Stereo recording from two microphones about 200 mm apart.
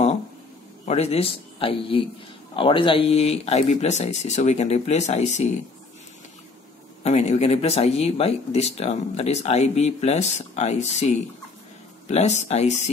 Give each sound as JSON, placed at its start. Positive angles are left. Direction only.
{"t": 0.8, "sound": "speech", "side_deg": 30}
{"t": 7.0, "sound": "speech", "side_deg": 35}